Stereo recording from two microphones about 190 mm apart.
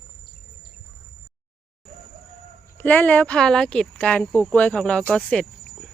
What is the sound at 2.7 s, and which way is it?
Speech, 10° left (ahead or behind).